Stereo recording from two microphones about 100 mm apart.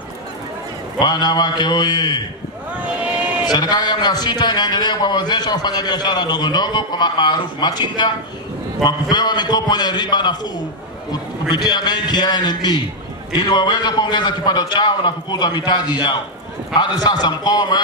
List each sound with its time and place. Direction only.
0.9 s a man's voice: 45° left (ahead or behind)
2.8 s a sound: 10° right (ahead or behind)
3.5 s a man's voice: 45° left (ahead or behind)
9.1 s a man's voice: 45° left (ahead or behind)
11.5 s a man's voice: 45° left (ahead or behind)